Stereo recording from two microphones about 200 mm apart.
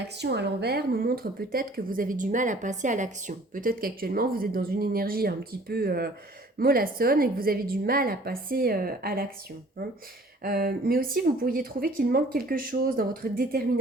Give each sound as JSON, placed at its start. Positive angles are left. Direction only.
{"t": 0.2, "sound": "a woman's voice", "side_deg": -60}
{"t": 10.4, "sound": "a woman's voice", "side_deg": -50}